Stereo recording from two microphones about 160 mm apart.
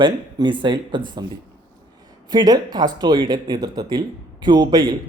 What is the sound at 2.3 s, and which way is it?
Speech, 25° right (ahead or behind).